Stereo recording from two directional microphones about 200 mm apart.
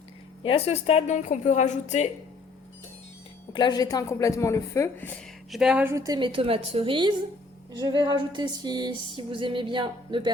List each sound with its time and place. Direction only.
0.4 s a woman's voice: 30° left (ahead or behind)
3.5 s speech: 20° left (ahead or behind)
5.5 s a sound: 5° right (ahead or behind); by 10.3 s 25° right (ahead or behind)